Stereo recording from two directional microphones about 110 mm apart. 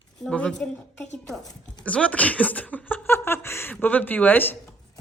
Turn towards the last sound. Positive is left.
turn(degrees=15)  # may be behind; listen again after turning